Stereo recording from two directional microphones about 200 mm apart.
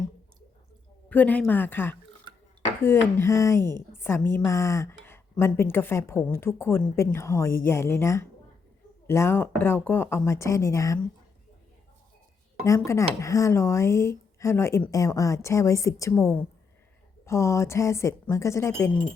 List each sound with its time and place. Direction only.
1.1 s a woman's voice: 10° left (ahead or behind)
3.6 s a woman's voice: 20° right (ahead or behind)
3.9 s a woman's voice: 10° left (ahead or behind)
12.6 s a woman's voice: 15° left (ahead or behind)